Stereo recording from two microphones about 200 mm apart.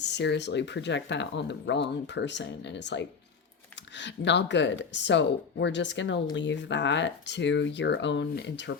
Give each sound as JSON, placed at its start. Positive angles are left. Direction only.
{"t": 0.0, "sound": "speech", "side_deg": 60}